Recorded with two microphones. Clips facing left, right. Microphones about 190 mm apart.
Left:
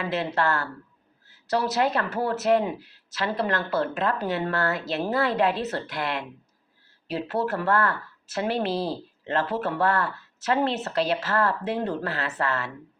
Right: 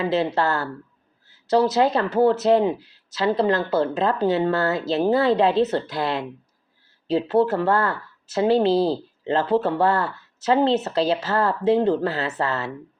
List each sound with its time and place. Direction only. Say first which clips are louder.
0.0 s speech: right 5 dB; 30° right (ahead or behind)